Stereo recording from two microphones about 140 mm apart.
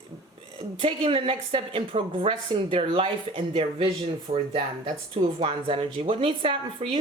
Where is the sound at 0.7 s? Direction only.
40° right (ahead or behind).